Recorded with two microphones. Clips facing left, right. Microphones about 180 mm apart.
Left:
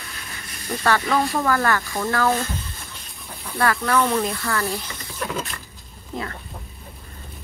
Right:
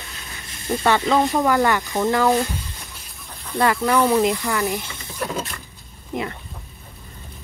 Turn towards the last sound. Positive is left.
turn(degrees=-20)  # may be behind; listen again after turning